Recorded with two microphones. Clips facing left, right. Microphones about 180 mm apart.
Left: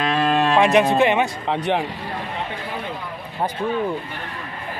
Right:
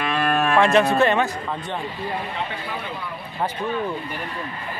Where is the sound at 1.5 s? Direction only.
75° left (ahead or behind).